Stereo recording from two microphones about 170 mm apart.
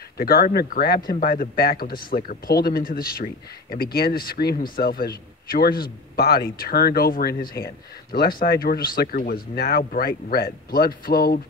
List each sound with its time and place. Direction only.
0.2 s a man's voice: 60° left (ahead or behind)